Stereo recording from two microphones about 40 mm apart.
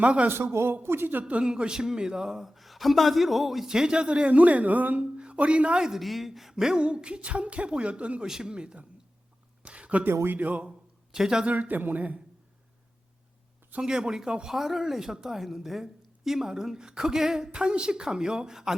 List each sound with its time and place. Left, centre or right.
0.0 s speech: right
0.5 s speech: right
1.5 s a man's voice: centre
3.7 s speech: centre; by 5.0 s right
5.1 s speech: right
6.0 s speech: centre; by 8.9 s right
9.6 s a sound: right
10.3 s speech: right
10.7 s a sound: centre
11.4 s speech: right
13.8 s speech: centre
14.5 s a woman's voice: centre